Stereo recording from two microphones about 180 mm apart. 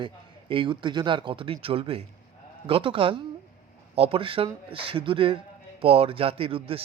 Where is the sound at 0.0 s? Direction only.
30° right (ahead or behind).